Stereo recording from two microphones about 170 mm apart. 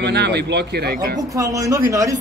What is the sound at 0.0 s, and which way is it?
Speech, 80° right.